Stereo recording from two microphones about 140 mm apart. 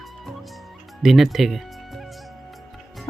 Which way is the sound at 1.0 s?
Centre (ahead or behind).